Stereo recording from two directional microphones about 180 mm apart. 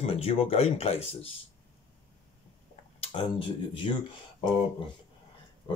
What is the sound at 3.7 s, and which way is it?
Speech, 30° left (ahead or behind).